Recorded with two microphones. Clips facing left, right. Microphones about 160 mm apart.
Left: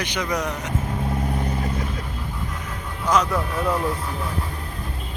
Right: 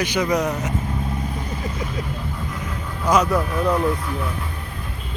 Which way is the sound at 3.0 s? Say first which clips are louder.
Right 3 dB; 10° right (ahead or behind).